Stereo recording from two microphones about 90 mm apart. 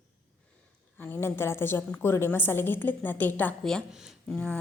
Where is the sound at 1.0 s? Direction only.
25° left (ahead or behind).